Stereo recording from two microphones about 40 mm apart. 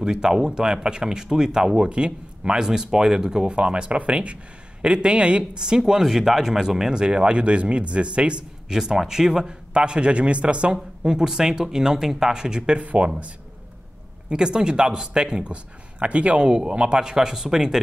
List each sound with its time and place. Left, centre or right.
0.0 s speech: centre
5.9 s speech: centre; by 8.5 s right
8.6 s a man's voice: centre; by 13.1 s right
14.3 s speech: right
17.0 s a man's voice: centre